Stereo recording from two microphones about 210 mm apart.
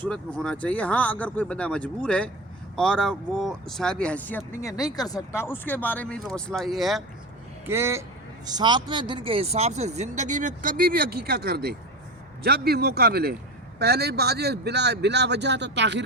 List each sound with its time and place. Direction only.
0.0 s speech: 5° left (ahead or behind)
7.7 s speech: 10° right (ahead or behind); by 16.0 s 55° right (ahead or behind)